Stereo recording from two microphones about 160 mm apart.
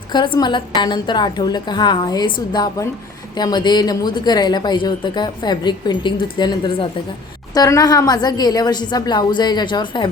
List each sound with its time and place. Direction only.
0.1 s a woman's voice: 30° left (ahead or behind)